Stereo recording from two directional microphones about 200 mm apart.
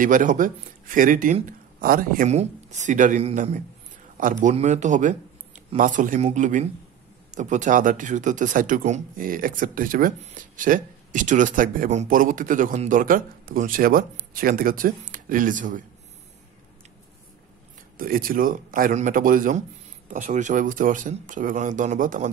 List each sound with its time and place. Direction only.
0.0 s speech: 40° right (ahead or behind)
17.9 s a man's voice: 45° right (ahead or behind)